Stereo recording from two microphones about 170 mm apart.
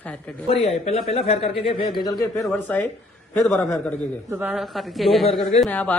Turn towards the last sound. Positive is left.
turn(degrees=10)  # may be behind; listen again after turning